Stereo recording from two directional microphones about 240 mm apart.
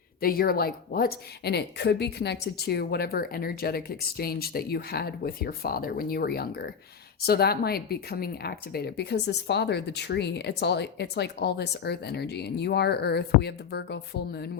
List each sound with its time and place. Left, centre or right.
0.2 s speech: left